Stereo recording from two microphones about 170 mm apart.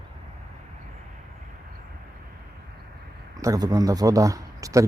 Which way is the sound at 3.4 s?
20° right (ahead or behind).